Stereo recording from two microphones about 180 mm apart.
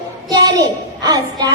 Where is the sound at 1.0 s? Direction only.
20° right (ahead or behind).